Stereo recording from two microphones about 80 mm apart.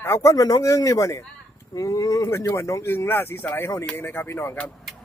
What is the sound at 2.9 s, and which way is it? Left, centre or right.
Speech, left.